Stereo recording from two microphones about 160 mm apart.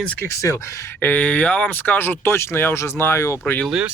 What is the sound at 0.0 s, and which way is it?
Speech, 10° left (ahead or behind).